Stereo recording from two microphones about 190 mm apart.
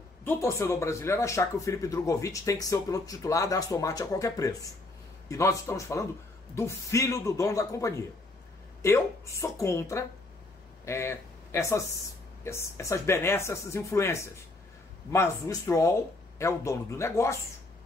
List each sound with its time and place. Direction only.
0.2 s a man's voice: 15° left (ahead or behind)